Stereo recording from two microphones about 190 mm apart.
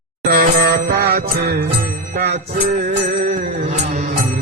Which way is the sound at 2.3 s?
40° right (ahead or behind).